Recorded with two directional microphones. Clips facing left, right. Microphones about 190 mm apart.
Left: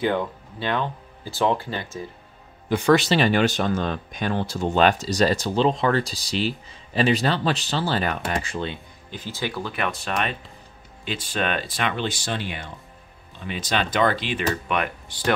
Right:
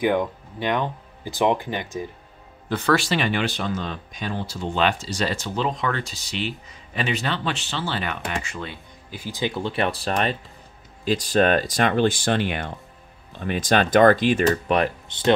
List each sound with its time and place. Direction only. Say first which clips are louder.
0.0 s speech: right 2 dB; 15° right (ahead or behind)
2.7 s a man's voice: left 3 dB; 15° left (ahead or behind)
3.2 s speech: left 4 dB; 40° left (ahead or behind)
9.1 s speech: right 2 dB; 15° right (ahead or behind); by 15.0 s 35° right (ahead or behind)
15.0 s speech: right 4 dB; 25° right (ahead or behind)